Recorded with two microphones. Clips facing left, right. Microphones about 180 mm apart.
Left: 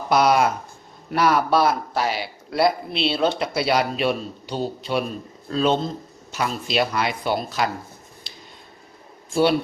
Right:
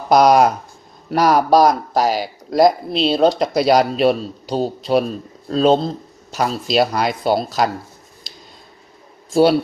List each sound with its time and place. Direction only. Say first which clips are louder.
0.1 s speech: right 6 dB; 40° right (ahead or behind)
8.3 s scissors: right 4 dB; 40° right (ahead or behind)
9.3 s speech: right 5 dB; 40° right (ahead or behind)